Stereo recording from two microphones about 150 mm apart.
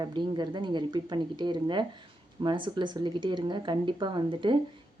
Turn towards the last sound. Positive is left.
turn(degrees=-30)  # may be behind; listen again after turning